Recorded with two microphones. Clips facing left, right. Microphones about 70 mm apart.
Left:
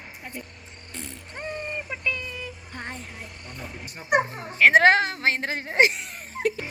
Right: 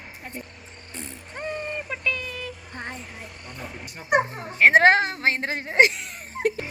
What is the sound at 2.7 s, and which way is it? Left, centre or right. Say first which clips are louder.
Music: right 1 dB; centre.